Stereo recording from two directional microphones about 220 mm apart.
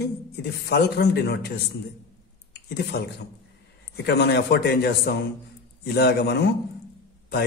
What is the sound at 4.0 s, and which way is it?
A man's voice, 50° left (ahead or behind).